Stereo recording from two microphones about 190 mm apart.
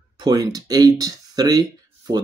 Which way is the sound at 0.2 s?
20° right (ahead or behind).